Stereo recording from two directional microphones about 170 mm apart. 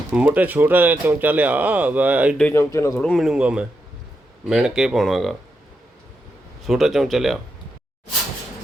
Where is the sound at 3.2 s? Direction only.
5° right (ahead or behind).